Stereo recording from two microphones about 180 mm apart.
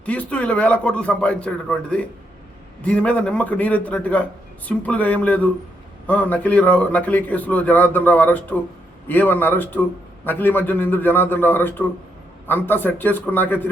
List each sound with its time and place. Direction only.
0.0 s a man's voice: 10° left (ahead or behind)